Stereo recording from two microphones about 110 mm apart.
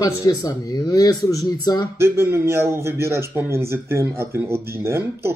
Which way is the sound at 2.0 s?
25° right (ahead or behind).